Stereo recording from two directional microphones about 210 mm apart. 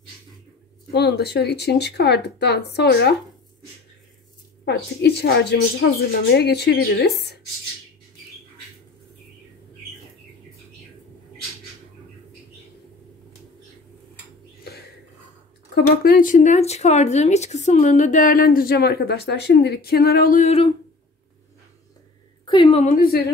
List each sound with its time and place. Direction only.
0.9 s speech: 50° left (ahead or behind)
4.6 s speech: 50° left (ahead or behind)
14.6 s a sound: 50° left (ahead or behind)
15.7 s speech: 45° left (ahead or behind); by 20.7 s 30° left (ahead or behind)
22.4 s a woman's voice: 20° left (ahead or behind); by 23.2 s 40° left (ahead or behind)